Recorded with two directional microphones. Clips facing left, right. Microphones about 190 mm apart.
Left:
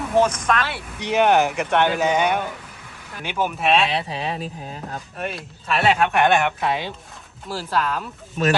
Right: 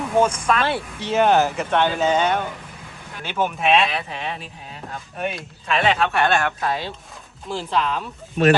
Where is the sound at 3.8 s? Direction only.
30° left (ahead or behind).